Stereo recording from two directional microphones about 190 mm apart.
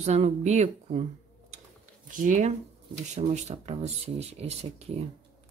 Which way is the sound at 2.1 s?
40° right (ahead or behind).